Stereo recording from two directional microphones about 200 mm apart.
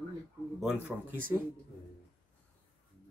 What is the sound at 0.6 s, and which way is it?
Speech, 5° right (ahead or behind).